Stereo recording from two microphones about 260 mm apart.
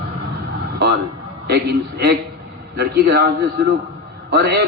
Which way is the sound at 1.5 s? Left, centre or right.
Right.